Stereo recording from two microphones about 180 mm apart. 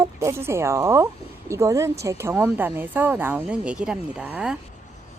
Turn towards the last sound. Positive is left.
turn(degrees=-5)  # may be behind; listen again after turning